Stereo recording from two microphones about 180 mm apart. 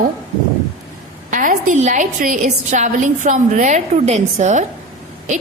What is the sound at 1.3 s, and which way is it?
A woman's voice, 45° right (ahead or behind).